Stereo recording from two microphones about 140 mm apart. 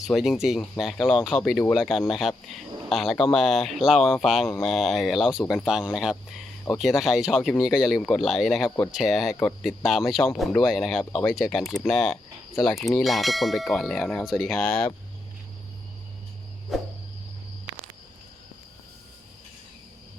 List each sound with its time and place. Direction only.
0.0 s speech: centre (ahead or behind)
16.7 s speech: centre (ahead or behind)